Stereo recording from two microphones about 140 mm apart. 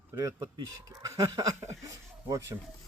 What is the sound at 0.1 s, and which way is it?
Speech, 25° right (ahead or behind).